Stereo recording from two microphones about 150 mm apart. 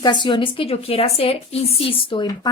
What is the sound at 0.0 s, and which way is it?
A woman's voice, 30° left (ahead or behind).